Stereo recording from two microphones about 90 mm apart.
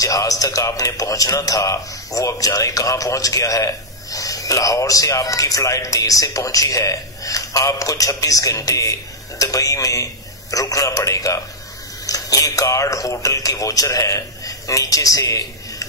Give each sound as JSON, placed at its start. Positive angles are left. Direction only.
{"t": 0.0, "sound": "a man's voice", "side_deg": 40}